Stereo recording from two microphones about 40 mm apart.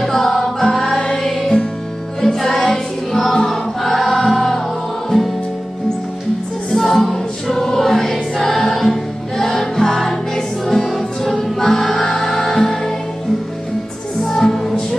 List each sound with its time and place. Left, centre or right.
0.0 s music: centre
0.9 s music: left
1.2 s music: centre
3.1 s choir: centre
3.4 s music: centre
6.7 s choir: centre
9.4 s music: centre
14.2 s music: centre